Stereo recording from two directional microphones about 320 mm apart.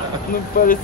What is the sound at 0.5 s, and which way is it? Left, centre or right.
Speech, left.